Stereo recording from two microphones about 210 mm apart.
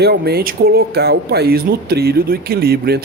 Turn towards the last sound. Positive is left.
turn(degrees=-45)  # may be behind; listen again after turning